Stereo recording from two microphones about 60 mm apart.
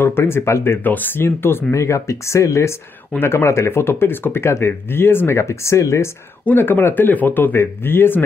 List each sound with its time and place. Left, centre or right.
0.0 s speech: left
0.8 s speech: left
1.7 s speech: left
5.4 s speech: left
6.4 s speech: left